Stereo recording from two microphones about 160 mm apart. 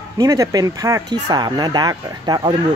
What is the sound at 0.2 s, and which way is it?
Speech, 20° right (ahead or behind).